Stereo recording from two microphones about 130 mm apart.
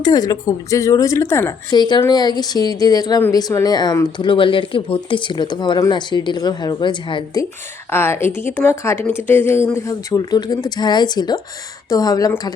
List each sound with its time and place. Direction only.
0.0 s a woman's voice: 30° left (ahead or behind)
1.7 s speech: 35° left (ahead or behind)
7.9 s a woman's voice: 20° left (ahead or behind)